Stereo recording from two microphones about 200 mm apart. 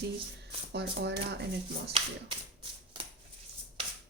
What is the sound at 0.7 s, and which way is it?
Speech, 55° right (ahead or behind).